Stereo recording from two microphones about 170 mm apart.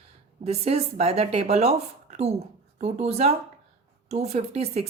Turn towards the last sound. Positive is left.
turn(degrees=-40)  # may be behind; listen again after turning